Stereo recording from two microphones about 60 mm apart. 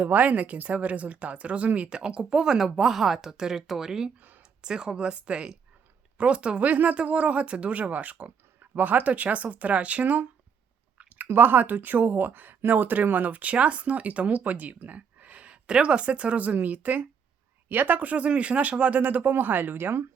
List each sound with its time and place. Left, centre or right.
0.0 s speech: right
11.3 s speech: right